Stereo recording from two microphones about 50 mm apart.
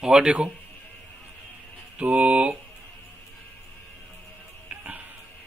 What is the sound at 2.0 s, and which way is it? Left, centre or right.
Speech, right.